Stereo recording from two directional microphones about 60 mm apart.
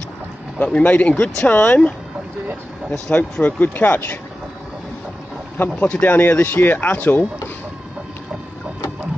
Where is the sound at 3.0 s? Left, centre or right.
Left.